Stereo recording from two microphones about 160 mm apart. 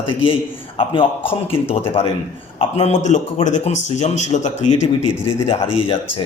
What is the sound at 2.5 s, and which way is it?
Speech, 40° left (ahead or behind).